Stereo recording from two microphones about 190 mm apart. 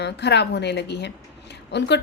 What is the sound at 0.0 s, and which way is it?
A woman's voice, 65° left (ahead or behind).